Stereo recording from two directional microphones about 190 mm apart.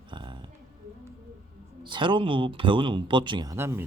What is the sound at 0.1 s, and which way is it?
Oink, 25° right (ahead or behind).